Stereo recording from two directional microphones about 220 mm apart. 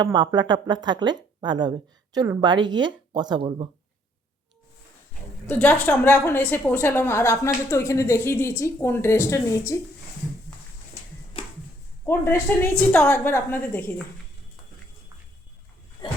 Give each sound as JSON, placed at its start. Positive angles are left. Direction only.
{"t": 0.0, "sound": "speech", "side_deg": -20}
{"t": 5.5, "sound": "a woman's voice", "side_deg": 5}
{"t": 11.3, "sound": "a sound", "side_deg": 25}
{"t": 12.0, "sound": "a woman's voice", "side_deg": 10}